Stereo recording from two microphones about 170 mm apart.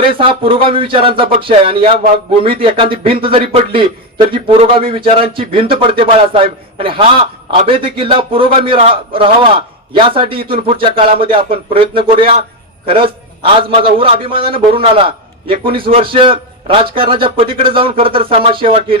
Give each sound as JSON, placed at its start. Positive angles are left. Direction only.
{"t": 0.0, "sound": "a man's voice", "side_deg": -30}